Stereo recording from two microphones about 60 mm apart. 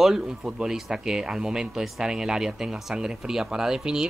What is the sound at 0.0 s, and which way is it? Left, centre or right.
Speech, centre.